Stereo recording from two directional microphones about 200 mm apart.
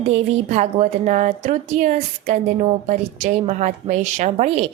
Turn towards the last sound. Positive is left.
turn(degrees=-30)  # may be behind; listen again after turning